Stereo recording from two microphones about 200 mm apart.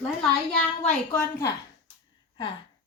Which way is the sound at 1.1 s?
15° left (ahead or behind).